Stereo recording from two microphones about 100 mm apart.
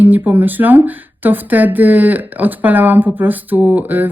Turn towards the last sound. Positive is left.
turn(degrees=-15)  # may be behind; listen again after turning